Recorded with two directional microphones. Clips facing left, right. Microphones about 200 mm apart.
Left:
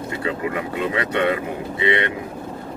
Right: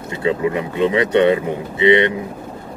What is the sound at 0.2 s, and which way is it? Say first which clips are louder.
Speech: right 7 dB; 25° right (ahead or behind).